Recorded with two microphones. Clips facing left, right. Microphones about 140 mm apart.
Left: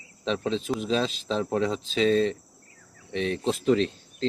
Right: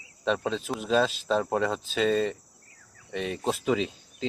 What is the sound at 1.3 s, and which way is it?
Speech, 55° right (ahead or behind).